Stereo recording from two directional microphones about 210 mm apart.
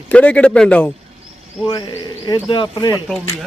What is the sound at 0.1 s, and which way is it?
Speech, 5° left (ahead or behind).